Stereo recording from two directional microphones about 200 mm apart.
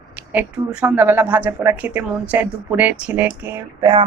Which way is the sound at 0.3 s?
5° right (ahead or behind).